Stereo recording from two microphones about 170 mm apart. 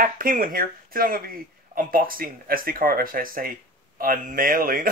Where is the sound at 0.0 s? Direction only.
55° right (ahead or behind).